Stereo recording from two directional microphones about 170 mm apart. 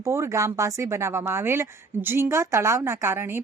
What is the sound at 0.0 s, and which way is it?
A woman's voice, 15° right (ahead or behind).